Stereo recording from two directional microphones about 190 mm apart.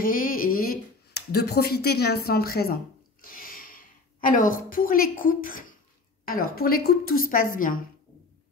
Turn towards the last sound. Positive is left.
turn(degrees=45)  # may be behind; listen again after turning